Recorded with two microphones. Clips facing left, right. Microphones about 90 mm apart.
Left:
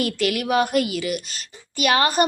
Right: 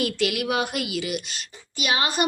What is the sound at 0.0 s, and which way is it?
Speech, 45° left (ahead or behind).